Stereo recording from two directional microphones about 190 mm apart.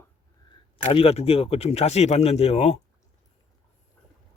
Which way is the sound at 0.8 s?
30° left (ahead or behind).